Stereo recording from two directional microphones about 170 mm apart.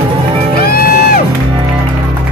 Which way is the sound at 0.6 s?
60° left (ahead or behind).